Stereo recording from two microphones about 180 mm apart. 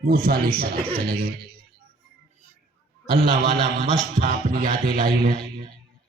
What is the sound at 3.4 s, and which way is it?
Speech, 25° right (ahead or behind).